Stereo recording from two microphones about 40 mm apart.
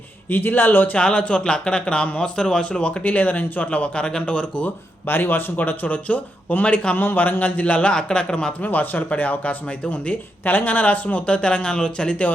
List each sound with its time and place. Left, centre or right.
0.3 s a man's voice: left
0.9 s speech: left
3.0 s speech: left
5.0 s speech: left
6.9 s speech: left
7.9 s speech: left
8.6 s speech: left